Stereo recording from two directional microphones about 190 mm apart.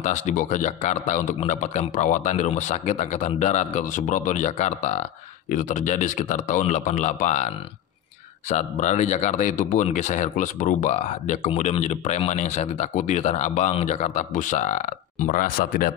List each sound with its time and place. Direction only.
0.0 s speech: 40° left (ahead or behind)